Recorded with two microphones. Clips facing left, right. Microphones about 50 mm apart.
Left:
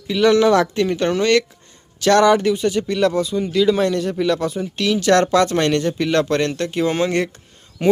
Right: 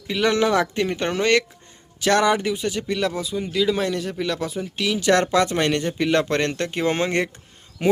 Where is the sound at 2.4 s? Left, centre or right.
Centre; by 7.3 s right.